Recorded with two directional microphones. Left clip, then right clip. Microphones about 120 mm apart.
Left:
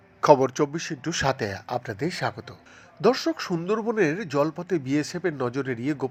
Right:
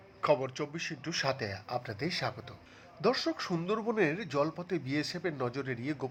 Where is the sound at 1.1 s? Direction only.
35° left (ahead or behind).